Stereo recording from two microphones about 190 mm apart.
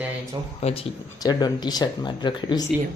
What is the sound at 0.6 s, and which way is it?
Speech, 35° left (ahead or behind).